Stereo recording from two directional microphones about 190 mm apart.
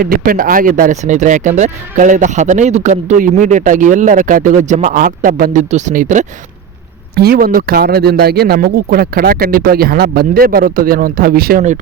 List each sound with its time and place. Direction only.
0.0 s speech: 50° right (ahead or behind)
7.2 s speech: 50° right (ahead or behind)